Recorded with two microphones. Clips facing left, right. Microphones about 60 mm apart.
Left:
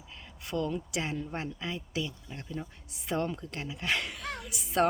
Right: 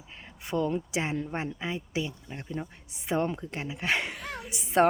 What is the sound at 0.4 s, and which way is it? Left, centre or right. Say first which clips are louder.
Speech: right 4 dB; right.